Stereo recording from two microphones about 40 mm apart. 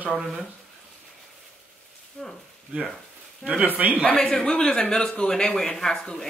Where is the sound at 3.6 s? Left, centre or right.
Right.